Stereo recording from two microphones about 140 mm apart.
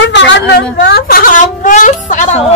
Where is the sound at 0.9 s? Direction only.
90° left; by 2.4 s 60° left (ahead or behind).